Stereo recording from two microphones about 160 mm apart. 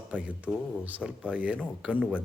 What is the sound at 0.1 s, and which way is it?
Speech, 5° right (ahead or behind).